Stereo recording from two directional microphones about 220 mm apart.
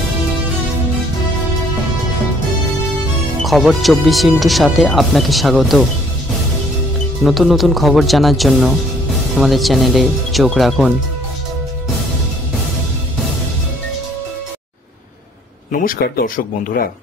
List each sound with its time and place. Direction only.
3.4 s speech: centre (ahead or behind)
7.2 s speech: centre (ahead or behind)
15.7 s speech: 40° left (ahead or behind)